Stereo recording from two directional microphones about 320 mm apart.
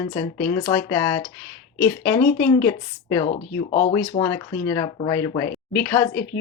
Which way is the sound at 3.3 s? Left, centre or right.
Centre.